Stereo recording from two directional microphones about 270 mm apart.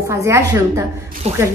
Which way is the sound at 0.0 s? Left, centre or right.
Centre.